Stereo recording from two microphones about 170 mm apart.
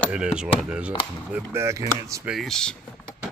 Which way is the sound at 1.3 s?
15° right (ahead or behind).